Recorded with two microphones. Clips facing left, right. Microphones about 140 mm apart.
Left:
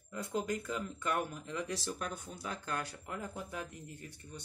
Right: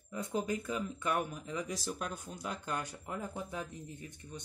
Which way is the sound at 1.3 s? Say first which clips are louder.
Even; 5° right (ahead or behind).